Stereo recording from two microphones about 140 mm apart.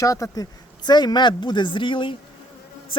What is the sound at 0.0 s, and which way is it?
Speech, 25° left (ahead or behind).